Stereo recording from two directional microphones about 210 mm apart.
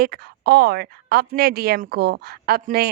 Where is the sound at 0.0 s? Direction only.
50° right (ahead or behind).